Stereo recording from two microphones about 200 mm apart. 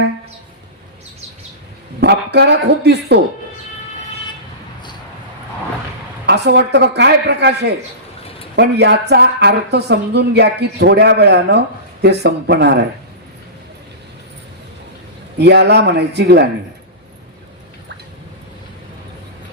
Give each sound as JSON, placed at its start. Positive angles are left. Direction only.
{"t": 2.0, "sound": "speech", "side_deg": -55}
{"t": 6.2, "sound": "speech", "side_deg": -55}
{"t": 15.4, "sound": "speech", "side_deg": -60}